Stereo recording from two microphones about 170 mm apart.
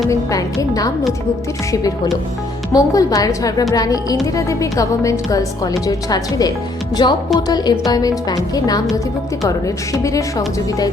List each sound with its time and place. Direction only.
0.1 s speech: 20° left (ahead or behind)
2.7 s speech: 20° left (ahead or behind)
9.9 s speech: 20° left (ahead or behind)